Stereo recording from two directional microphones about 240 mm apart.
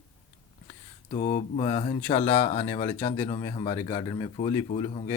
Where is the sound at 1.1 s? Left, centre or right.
Left.